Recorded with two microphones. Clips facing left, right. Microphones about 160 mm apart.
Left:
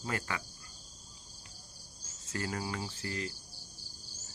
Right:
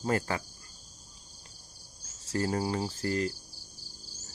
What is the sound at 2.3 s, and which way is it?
Cricket, 35° right (ahead or behind).